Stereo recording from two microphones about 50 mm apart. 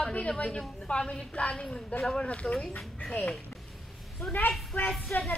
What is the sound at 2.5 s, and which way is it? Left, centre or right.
Speech, centre.